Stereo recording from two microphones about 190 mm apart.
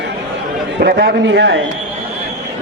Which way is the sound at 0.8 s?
55° right (ahead or behind).